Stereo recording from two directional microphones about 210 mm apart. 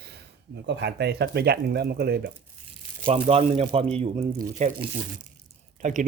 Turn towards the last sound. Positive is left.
turn(degrees=-35)  # may be behind; listen again after turning